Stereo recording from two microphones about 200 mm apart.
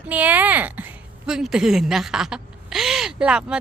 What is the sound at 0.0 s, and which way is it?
A woman's voice, 5° right (ahead or behind).